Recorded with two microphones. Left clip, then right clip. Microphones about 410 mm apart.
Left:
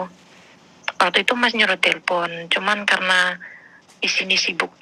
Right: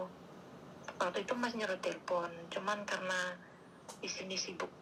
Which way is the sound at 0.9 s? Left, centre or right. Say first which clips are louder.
Left 19 dB; left.